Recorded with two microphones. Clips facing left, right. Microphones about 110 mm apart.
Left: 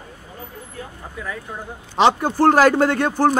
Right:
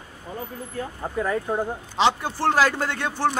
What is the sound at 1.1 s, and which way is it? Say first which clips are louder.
Speech: right 7 dB; 45° right (ahead or behind).